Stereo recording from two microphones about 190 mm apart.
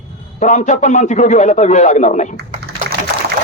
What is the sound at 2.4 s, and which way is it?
Typing, 60° right (ahead or behind).